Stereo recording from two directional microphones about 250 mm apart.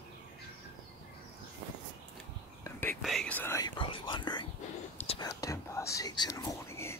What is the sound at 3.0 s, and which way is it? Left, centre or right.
Speech, centre.